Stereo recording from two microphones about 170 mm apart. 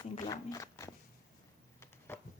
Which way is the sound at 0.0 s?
20° left (ahead or behind).